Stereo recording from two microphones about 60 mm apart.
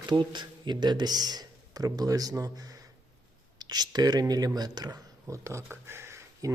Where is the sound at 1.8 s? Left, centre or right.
Right.